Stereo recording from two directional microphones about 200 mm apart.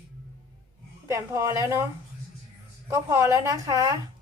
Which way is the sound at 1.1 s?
15° right (ahead or behind).